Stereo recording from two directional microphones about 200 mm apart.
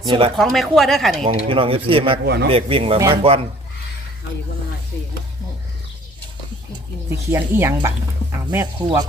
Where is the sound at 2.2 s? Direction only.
55° right (ahead or behind).